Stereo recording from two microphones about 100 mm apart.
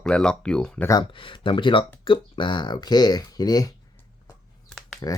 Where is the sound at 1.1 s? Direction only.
60° left (ahead or behind); by 3.7 s 40° left (ahead or behind).